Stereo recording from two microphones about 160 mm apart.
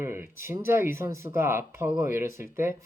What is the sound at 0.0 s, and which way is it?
Speech, 15° right (ahead or behind).